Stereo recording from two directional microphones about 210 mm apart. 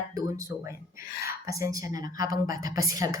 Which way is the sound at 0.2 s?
15° right (ahead or behind).